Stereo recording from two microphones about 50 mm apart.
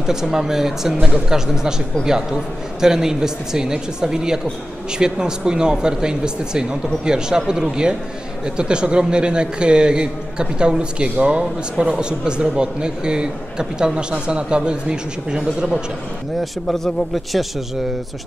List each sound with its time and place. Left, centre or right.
0.0 s a man's voice: centre
2.8 s a man's voice: centre
16.3 s a man's voice: centre